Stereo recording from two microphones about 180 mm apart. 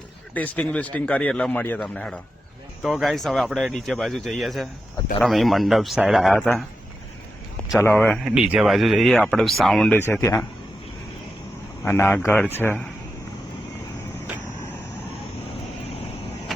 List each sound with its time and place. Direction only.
0.3 s speech: 10° left (ahead or behind)
7.8 s speech: 10° left (ahead or behind)
10.0 s speech: 15° left (ahead or behind)
11.9 s speech: 10° left (ahead or behind)